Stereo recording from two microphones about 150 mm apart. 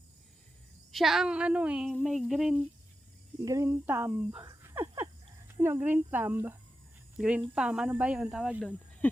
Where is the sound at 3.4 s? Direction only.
20° right (ahead or behind).